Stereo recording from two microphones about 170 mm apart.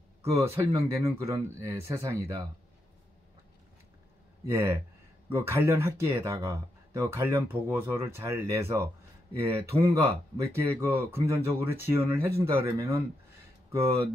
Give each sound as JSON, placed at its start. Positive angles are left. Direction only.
{"t": 0.2, "sound": "speech", "side_deg": -15}
{"t": 4.5, "sound": "speech", "side_deg": -15}